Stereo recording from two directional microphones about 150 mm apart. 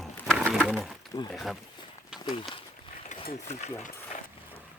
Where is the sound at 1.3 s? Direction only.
Centre (ahead or behind).